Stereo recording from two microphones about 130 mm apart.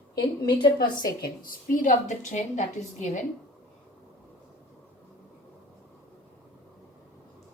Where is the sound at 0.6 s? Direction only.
35° left (ahead or behind).